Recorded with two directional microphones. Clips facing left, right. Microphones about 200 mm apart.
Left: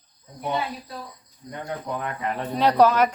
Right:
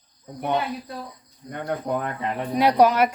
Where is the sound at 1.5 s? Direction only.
55° right (ahead or behind).